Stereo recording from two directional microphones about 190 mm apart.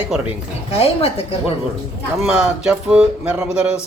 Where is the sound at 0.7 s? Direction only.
30° left (ahead or behind).